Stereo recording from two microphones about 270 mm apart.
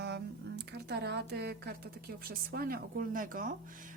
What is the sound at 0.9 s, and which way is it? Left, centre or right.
A woman's voice, right.